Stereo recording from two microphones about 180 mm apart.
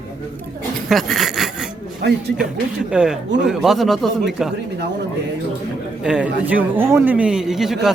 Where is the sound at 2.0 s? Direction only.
65° right (ahead or behind).